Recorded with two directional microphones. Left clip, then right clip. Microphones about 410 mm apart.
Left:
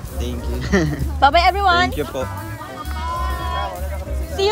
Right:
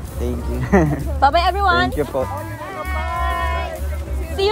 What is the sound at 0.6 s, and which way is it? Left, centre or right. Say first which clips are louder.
Speech: right 3 dB; centre.